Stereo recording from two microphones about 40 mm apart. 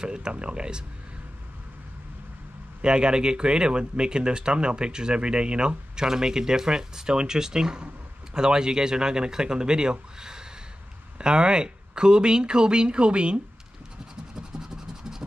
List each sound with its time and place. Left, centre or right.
0.0 s speech: right
2.8 s speech: right
14.6 s vehicle: centre